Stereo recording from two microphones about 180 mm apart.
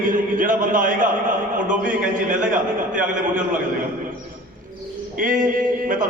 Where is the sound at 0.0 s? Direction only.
45° right (ahead or behind).